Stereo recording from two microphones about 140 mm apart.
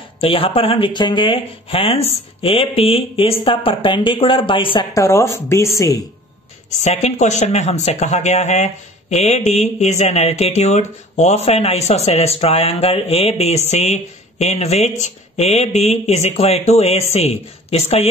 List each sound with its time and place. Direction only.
0.2 s speech: 40° left (ahead or behind)
4.9 s a woman's voice: 20° left (ahead or behind)
6.8 s speech: 55° left (ahead or behind)